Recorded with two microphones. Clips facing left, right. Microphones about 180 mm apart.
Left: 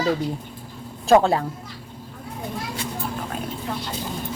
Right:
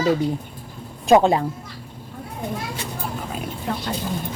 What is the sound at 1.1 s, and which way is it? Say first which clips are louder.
Speech: right 1 dB; 15° right (ahead or behind).